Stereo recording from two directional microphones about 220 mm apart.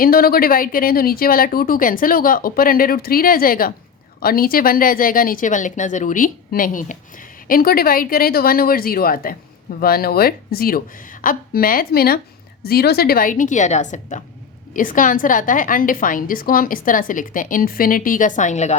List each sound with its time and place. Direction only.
0.0 s a woman's voice: 45° left (ahead or behind)